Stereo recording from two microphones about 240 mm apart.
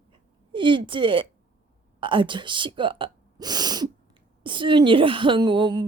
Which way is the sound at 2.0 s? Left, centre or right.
Right.